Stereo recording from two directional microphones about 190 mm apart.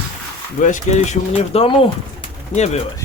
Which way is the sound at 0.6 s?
40° left (ahead or behind).